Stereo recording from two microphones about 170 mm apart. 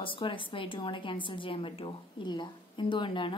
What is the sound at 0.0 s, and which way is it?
A woman's voice, 30° left (ahead or behind).